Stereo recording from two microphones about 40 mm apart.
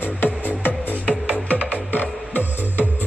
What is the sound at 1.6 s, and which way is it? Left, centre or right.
Music, right.